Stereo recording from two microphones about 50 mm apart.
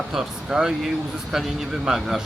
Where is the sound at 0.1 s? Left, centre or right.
Centre.